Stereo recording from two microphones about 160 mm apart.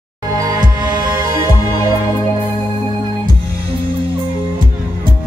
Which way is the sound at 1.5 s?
25° left (ahead or behind).